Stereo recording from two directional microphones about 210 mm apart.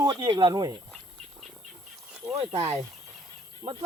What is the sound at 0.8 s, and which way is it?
Duck, centre (ahead or behind).